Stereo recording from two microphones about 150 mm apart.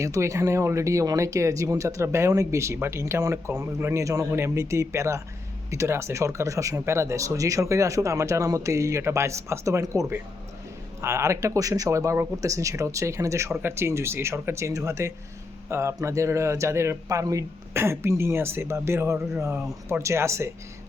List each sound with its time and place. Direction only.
0.0 s speech: 20° right (ahead or behind)